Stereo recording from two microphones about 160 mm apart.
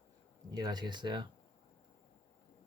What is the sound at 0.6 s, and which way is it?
Speech, 25° right (ahead or behind).